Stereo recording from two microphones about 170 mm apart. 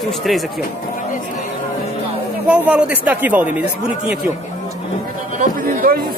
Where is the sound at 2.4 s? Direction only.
5° right (ahead or behind).